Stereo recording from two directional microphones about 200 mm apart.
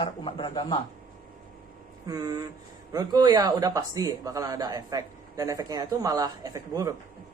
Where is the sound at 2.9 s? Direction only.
20° right (ahead or behind).